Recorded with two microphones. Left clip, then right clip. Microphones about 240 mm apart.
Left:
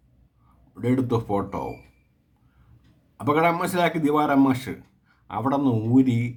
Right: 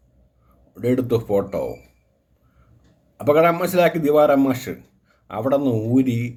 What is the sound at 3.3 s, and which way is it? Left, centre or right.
A man's voice, centre.